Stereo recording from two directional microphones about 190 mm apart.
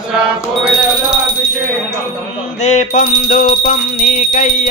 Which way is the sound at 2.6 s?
40° left (ahead or behind).